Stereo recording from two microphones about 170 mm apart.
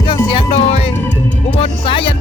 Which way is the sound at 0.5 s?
40° left (ahead or behind).